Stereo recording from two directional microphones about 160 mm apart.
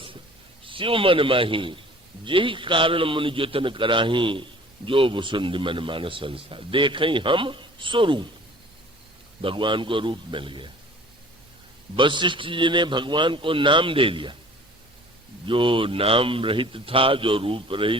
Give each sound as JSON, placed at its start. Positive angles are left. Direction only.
{"t": 0.6, "sound": "speech", "side_deg": -35}
{"t": 9.4, "sound": "speech", "side_deg": -30}
{"t": 11.9, "sound": "speech", "side_deg": -30}
{"t": 15.4, "sound": "speech", "side_deg": -30}